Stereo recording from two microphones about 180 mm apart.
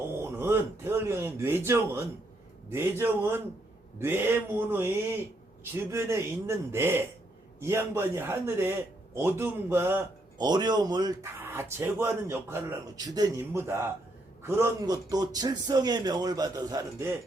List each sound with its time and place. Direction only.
0.1 s a man's voice: 15° right (ahead or behind)
11.3 s a man's voice: 10° right (ahead or behind)